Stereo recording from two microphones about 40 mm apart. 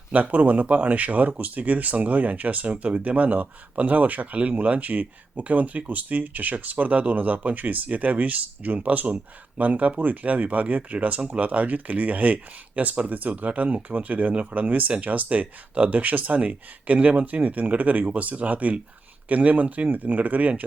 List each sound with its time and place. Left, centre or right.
0.1 s speech: right